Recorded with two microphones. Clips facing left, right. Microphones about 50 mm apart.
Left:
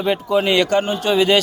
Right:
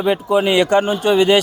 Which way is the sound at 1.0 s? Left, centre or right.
Centre.